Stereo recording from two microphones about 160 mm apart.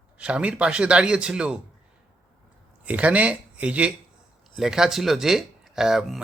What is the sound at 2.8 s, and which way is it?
A man's voice, 10° right (ahead or behind).